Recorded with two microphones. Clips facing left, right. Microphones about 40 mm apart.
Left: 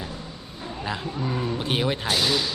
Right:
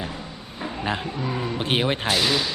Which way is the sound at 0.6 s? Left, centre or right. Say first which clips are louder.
Right 4 dB; right.